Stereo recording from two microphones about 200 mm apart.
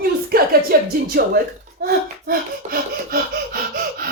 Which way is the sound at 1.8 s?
50° right (ahead or behind).